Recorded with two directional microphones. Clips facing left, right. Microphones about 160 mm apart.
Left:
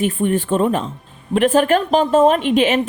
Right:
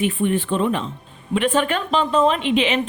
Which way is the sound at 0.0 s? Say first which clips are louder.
Left 2 dB; 40° left (ahead or behind).